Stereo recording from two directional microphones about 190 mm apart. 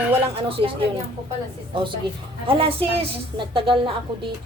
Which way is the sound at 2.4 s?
30° right (ahead or behind).